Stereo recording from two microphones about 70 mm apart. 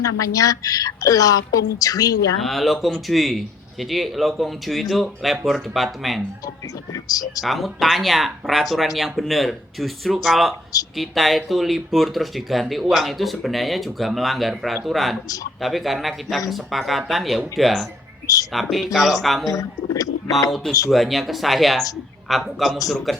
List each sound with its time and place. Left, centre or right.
0.0 s a woman's voice: left
2.4 s speech: centre
6.9 s a woman's voice: left
7.4 s speech: centre
19.5 s speech: left
20.9 s speech: centre